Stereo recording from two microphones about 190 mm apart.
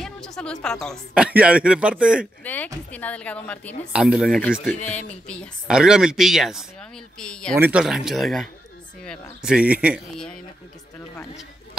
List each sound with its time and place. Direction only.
0.0 s speech: 5° left (ahead or behind)
2.4 s a woman's voice: 10° left (ahead or behind)
3.9 s speech: 5° right (ahead or behind)
7.5 s speech: 10° right (ahead or behind)